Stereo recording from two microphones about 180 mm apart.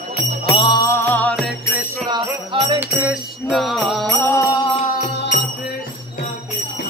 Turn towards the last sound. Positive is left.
turn(degrees=70)  # may be behind; listen again after turning